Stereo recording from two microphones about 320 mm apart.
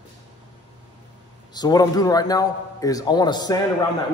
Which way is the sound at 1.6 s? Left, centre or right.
Centre.